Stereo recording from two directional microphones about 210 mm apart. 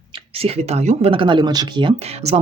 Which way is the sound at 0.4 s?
30° right (ahead or behind).